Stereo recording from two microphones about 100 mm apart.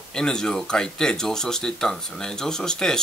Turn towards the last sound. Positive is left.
turn(degrees=5)  # may be behind; listen again after turning